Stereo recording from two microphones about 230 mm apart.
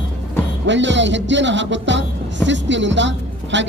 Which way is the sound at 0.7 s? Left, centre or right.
Right.